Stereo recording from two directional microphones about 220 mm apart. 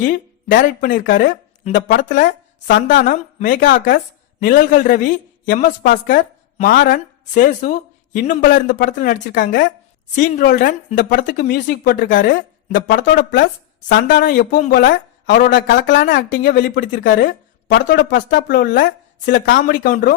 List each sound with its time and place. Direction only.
0.0 s a woman's voice: 40° left (ahead or behind)